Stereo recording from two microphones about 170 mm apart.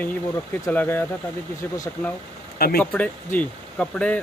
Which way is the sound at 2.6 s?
60° left (ahead or behind).